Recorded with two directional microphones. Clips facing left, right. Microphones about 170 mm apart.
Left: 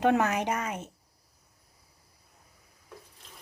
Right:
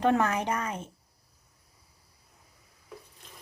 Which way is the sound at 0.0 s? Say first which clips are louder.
Even; 15° left (ahead or behind).